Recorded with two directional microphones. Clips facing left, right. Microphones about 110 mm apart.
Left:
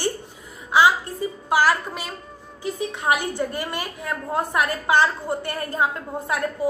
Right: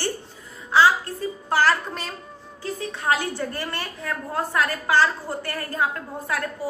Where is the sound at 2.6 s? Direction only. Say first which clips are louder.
Left 2 dB; 15° left (ahead or behind).